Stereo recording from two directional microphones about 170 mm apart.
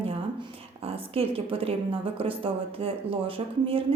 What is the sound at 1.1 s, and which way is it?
Speech, 35° right (ahead or behind).